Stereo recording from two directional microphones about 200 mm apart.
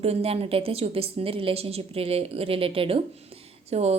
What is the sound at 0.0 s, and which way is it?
A woman's voice, 30° right (ahead or behind).